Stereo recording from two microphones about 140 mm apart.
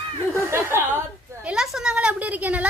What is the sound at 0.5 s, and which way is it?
Chuckle, 15° right (ahead or behind).